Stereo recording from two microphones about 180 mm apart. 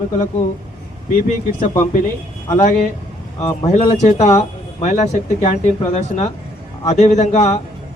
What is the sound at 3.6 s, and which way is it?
A man's voice, 35° left (ahead or behind).